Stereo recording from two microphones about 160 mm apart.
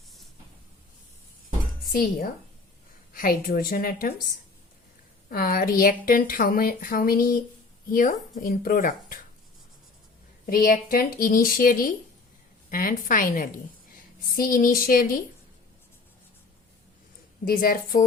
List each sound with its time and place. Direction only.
3.1 s speech: 60° left (ahead or behind)
5.3 s speech: 65° left (ahead or behind)
10.4 s speech: 65° left (ahead or behind)
17.4 s speech: 65° left (ahead or behind)